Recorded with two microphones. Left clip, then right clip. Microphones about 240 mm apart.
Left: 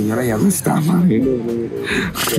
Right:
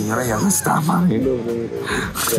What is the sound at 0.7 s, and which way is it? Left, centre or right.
Speech, centre.